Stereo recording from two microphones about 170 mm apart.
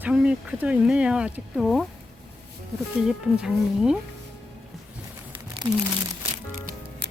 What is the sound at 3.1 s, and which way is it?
Speech, 5° right (ahead or behind).